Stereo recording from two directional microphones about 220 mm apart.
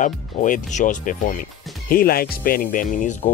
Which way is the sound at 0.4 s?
35° left (ahead or behind).